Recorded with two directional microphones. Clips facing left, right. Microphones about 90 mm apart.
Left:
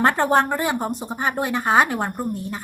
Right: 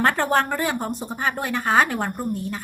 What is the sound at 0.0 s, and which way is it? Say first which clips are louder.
Speech: left 2 dB; 20° left (ahead or behind).